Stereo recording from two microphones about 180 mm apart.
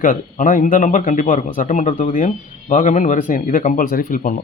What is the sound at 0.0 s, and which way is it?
Speech, 50° left (ahead or behind).